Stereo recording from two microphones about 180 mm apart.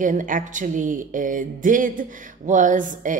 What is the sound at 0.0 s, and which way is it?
Speech, 45° right (ahead or behind).